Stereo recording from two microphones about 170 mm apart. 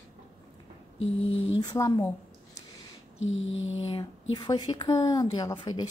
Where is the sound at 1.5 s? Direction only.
20° left (ahead or behind).